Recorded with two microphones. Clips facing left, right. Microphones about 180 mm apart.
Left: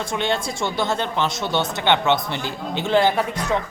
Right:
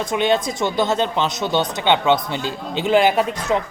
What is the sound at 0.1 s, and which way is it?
Speech, 15° right (ahead or behind).